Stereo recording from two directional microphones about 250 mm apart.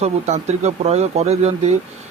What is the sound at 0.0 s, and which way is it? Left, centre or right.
Speech, right.